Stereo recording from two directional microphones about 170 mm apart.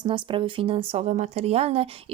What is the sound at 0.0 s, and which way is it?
Speech, 30° right (ahead or behind).